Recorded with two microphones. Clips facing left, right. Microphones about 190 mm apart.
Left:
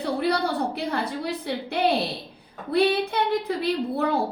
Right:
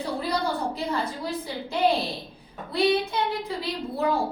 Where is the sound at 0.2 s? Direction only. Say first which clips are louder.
Left 3 dB; 65° left (ahead or behind).